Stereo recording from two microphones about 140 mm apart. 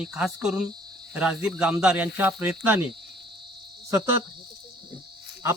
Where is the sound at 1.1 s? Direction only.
5° right (ahead or behind).